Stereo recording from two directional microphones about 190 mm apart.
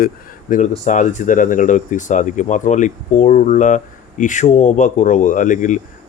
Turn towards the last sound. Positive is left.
turn(degrees=40)  # may be behind; listen again after turning